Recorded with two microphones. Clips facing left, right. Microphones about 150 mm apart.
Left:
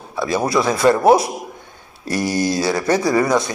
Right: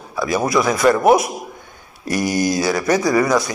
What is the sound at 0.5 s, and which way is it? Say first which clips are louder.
Speech: even; 30° left (ahead or behind).